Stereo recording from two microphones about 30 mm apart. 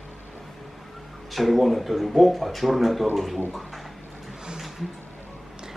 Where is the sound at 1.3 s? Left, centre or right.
Centre.